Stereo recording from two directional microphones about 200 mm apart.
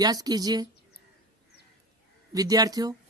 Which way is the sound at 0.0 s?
20° right (ahead or behind).